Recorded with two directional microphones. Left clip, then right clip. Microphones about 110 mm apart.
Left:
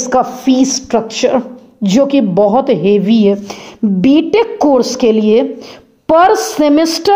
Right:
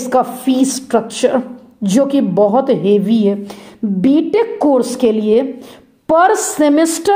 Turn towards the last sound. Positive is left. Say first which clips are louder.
# left 2 dB
turn(degrees=30)  # may be behind; listen again after turning